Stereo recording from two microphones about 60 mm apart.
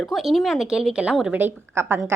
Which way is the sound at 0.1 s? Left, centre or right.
Centre.